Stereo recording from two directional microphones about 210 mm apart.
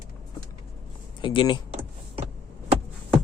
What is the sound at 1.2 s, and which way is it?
Speech, 25° left (ahead or behind).